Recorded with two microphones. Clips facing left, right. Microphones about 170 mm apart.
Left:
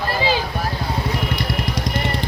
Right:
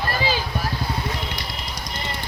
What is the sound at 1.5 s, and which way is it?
Vehicle, 75° left (ahead or behind).